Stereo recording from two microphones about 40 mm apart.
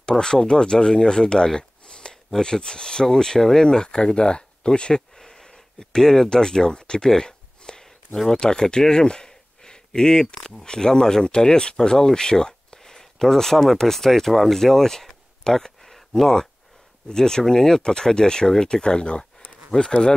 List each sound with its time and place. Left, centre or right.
0.2 s speech: centre
5.1 s a sound: centre
10.6 s speech: centre